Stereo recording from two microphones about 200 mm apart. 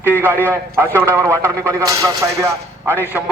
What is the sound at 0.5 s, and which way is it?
A man's voice, 15° right (ahead or behind).